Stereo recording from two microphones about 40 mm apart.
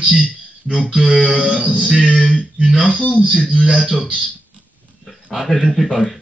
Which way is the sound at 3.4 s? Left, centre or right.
Centre.